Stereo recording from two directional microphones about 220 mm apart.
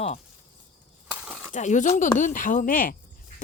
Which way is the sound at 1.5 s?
35° left (ahead or behind).